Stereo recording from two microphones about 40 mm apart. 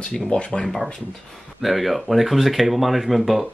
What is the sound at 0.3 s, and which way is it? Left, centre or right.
Speech, left.